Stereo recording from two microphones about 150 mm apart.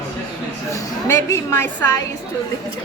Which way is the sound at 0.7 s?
20° left (ahead or behind).